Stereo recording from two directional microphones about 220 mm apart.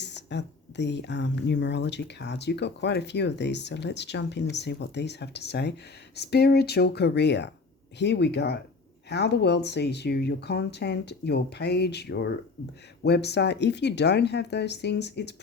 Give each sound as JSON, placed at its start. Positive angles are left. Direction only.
{"t": 0.0, "sound": "speech", "side_deg": 50}